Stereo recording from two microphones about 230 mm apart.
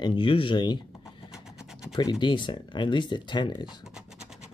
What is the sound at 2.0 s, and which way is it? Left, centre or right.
Speech, centre.